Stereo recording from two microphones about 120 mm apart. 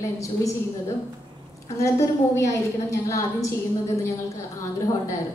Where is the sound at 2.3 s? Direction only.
25° left (ahead or behind).